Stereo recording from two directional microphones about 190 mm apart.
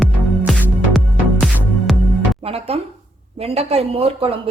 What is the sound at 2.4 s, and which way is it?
A woman's voice, 30° right (ahead or behind).